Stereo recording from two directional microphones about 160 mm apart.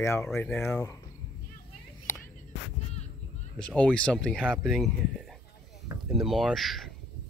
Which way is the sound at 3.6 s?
5° left (ahead or behind).